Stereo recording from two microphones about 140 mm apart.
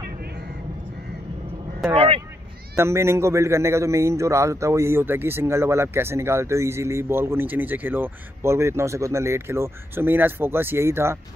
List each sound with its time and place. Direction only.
2.0 s speech: 40° right (ahead or behind)
2.7 s a man's voice: 20° right (ahead or behind)